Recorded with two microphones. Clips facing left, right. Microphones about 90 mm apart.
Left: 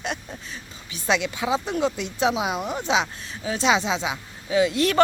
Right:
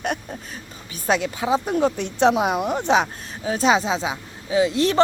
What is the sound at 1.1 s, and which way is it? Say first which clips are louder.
Speech: right 2 dB; 35° right (ahead or behind).